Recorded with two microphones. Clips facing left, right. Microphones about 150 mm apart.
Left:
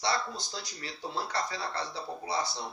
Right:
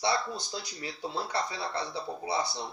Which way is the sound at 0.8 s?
15° right (ahead or behind).